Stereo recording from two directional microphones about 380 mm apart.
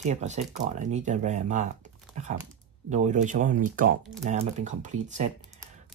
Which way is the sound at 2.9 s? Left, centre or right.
Centre.